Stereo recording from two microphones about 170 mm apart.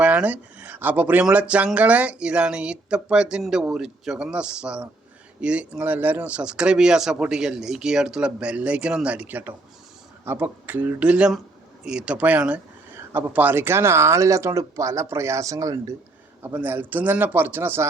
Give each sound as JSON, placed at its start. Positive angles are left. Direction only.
{"t": 0.0, "sound": "speech", "side_deg": -10}